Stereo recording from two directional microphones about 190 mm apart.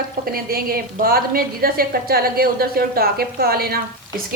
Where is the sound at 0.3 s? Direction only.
50° right (ahead or behind).